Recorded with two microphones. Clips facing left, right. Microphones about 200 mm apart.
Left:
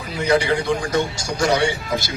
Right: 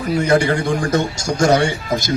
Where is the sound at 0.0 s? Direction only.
45° right (ahead or behind).